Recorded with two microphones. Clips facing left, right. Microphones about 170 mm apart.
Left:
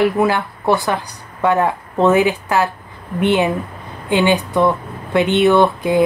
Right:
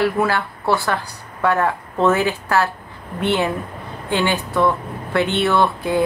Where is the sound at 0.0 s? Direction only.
15° left (ahead or behind).